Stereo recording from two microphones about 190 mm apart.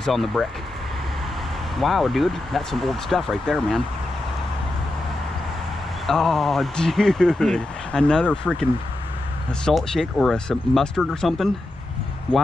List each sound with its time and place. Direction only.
0.0 s speech: centre (ahead or behind)
1.8 s speech: centre (ahead or behind)
6.0 s speech: centre (ahead or behind)
9.7 s speech: centre (ahead or behind)